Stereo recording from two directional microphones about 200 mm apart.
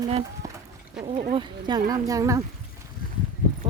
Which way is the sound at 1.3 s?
20° right (ahead or behind).